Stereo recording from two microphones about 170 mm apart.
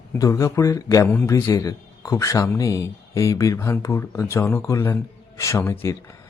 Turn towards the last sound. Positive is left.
turn(degrees=20)  # may be behind; listen again after turning